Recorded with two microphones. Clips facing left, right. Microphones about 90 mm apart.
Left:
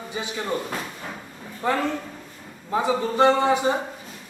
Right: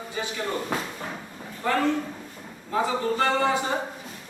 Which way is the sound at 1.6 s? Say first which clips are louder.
Even; 20° left (ahead or behind).